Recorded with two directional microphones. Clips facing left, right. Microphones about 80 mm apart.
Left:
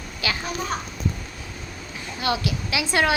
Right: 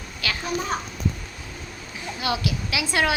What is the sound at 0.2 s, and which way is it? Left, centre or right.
Speech, centre.